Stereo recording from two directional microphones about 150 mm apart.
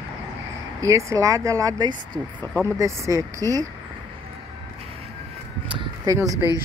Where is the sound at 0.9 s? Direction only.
20° right (ahead or behind).